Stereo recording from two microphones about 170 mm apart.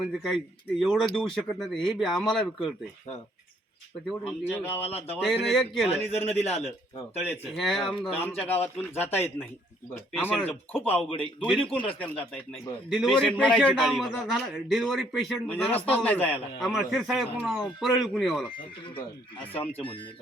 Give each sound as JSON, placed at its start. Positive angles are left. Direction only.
{"t": 0.0, "sound": "a man's voice", "side_deg": 0}
{"t": 4.1, "sound": "a man's voice", "side_deg": 0}
{"t": 4.9, "sound": "a man's voice", "side_deg": 35}
{"t": 5.1, "sound": "a man's voice", "side_deg": 0}
{"t": 5.9, "sound": "a man's voice", "side_deg": 35}
{"t": 7.5, "sound": "a man's voice", "side_deg": 0}
{"t": 16.6, "sound": "a man's voice", "side_deg": 0}
{"t": 19.7, "sound": "a man's voice", "side_deg": 30}